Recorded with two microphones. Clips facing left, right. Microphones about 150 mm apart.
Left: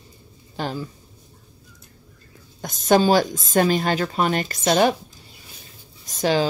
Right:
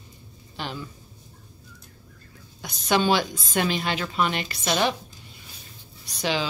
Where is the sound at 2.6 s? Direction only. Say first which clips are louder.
Left 5 dB; 45° left (ahead or behind).